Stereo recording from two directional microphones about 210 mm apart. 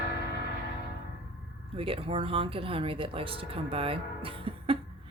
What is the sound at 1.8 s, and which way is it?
Speech, 25° right (ahead or behind).